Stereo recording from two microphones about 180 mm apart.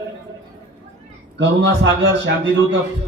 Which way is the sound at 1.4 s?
90° right.